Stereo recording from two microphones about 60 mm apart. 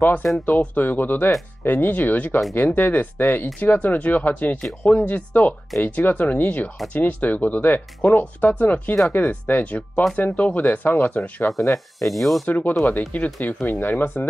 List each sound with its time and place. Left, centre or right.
0.0 s speech: left
12.0 s speech: centre
12.4 s speech: left